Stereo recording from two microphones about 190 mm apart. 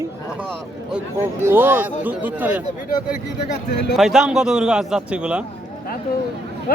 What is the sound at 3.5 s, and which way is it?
Speech, 60° left (ahead or behind).